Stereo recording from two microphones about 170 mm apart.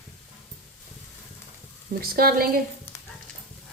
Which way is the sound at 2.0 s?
60° right (ahead or behind).